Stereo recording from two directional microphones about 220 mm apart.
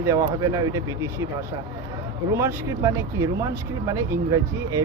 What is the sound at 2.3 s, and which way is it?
Speech, 15° right (ahead or behind).